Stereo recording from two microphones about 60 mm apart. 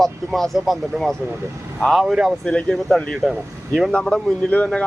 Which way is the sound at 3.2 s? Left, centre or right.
Centre.